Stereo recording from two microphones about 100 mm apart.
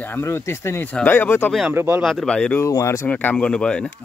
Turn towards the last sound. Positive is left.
turn(degrees=10)  # may be behind; listen again after turning